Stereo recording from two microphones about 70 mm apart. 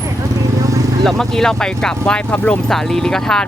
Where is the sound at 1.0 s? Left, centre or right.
Centre.